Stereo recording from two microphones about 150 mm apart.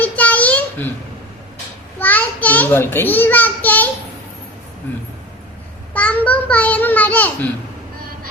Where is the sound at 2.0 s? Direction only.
10° left (ahead or behind).